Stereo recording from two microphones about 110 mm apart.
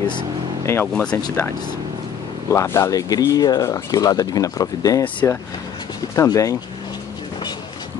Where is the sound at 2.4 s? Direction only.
30° left (ahead or behind).